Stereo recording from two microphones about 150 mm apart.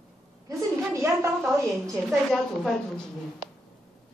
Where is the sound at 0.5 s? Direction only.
20° right (ahead or behind).